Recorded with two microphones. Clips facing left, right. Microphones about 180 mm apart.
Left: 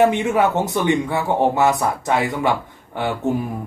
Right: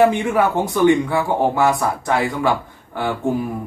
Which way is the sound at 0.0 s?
20° left (ahead or behind).